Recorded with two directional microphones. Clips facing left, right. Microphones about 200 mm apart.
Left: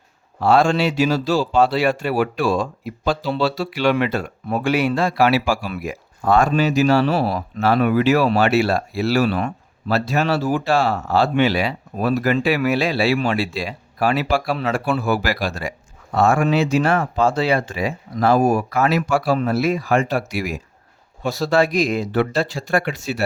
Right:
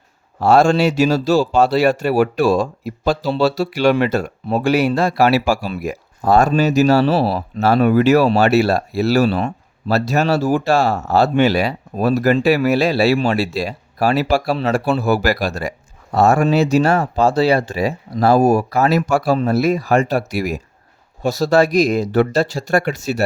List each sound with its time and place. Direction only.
0.3 s speech: 45° right (ahead or behind)
9.3 s a sound: 30° right (ahead or behind)
9.9 s speech: 40° right (ahead or behind)